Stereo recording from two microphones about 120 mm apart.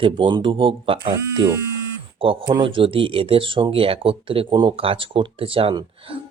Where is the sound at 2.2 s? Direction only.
50° right (ahead or behind).